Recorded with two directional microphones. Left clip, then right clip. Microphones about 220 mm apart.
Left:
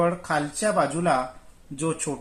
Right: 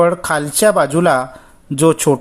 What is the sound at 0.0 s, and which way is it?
Speech, 50° right (ahead or behind).